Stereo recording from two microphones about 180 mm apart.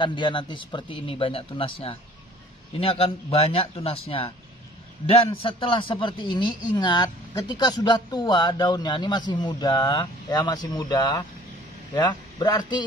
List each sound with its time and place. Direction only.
0.0 s a man's voice: 25° left (ahead or behind)